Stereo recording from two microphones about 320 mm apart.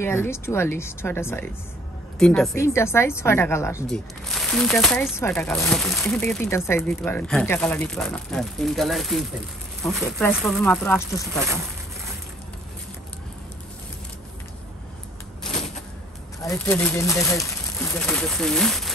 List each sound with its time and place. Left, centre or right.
0.0 s a woman's voice: centre
16.4 s a woman's voice: centre